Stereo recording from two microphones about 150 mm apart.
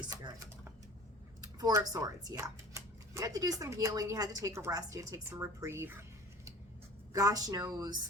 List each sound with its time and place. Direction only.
1.4 s speech: 25° right (ahead or behind)